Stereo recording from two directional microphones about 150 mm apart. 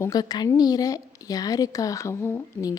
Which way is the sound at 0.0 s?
25° left (ahead or behind).